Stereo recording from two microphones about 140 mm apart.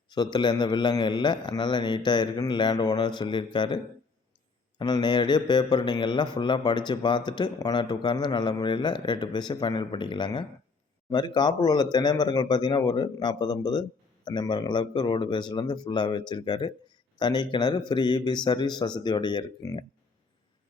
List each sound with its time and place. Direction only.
0.1 s speech: 30° left (ahead or behind)
4.8 s speech: 30° left (ahead or behind)